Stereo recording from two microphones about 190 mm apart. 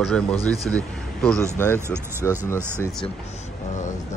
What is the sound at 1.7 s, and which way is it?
Speech, 15° right (ahead or behind).